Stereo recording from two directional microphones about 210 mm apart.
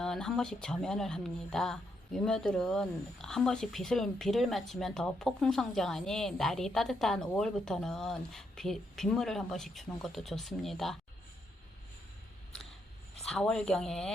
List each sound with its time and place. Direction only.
0.0 s speech: centre (ahead or behind)
13.2 s speech: 5° left (ahead or behind)